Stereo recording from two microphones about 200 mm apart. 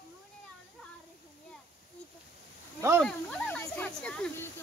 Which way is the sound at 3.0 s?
5° left (ahead or behind).